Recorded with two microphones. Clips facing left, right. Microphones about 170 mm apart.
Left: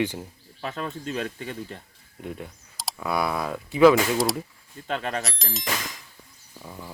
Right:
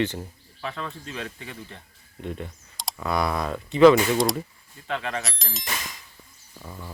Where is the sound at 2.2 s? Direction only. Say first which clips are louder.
Right 2 dB; 5° left (ahead or behind).